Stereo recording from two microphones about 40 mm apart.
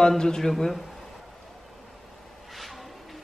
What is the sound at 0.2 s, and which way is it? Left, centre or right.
Speech, centre.